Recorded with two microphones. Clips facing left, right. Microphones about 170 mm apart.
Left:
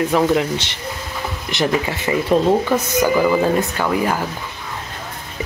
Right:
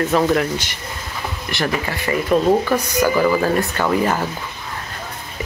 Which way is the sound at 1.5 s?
20° left (ahead or behind).